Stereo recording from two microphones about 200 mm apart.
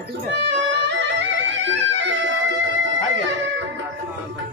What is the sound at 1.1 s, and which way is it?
Music, 65° right (ahead or behind).